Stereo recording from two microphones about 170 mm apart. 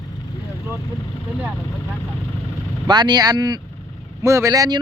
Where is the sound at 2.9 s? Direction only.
25° right (ahead or behind).